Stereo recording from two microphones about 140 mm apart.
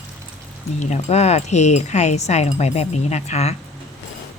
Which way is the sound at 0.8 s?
55° left (ahead or behind).